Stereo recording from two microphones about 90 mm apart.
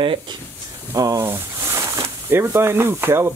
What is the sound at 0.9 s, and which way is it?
Speech, 40° right (ahead or behind).